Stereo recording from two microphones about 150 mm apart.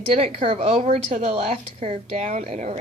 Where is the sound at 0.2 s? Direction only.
40° right (ahead or behind).